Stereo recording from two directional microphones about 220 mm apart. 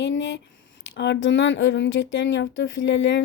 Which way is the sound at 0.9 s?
50° left (ahead or behind).